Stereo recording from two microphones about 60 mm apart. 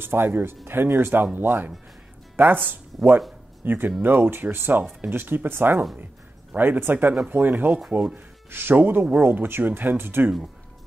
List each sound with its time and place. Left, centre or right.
0.0 s speech: right